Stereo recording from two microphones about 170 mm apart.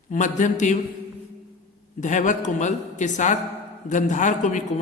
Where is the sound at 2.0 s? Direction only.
45° left (ahead or behind).